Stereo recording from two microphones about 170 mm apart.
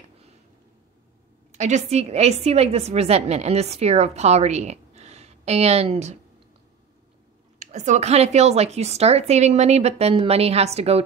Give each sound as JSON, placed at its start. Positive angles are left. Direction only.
{"t": 1.5, "sound": "a woman's voice", "side_deg": -45}
{"t": 7.5, "sound": "a woman's voice", "side_deg": -45}